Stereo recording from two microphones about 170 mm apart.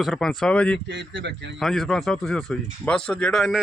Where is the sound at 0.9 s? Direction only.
90° right.